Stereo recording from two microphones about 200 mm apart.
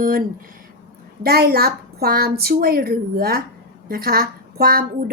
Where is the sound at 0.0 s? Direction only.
45° right (ahead or behind).